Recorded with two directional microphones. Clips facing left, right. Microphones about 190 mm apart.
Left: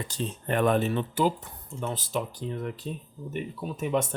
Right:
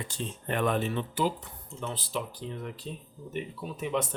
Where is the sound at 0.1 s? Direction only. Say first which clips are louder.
Left 5 dB; 45° left (ahead or behind).